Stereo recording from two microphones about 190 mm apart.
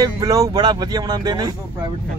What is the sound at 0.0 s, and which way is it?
Speech, 20° right (ahead or behind).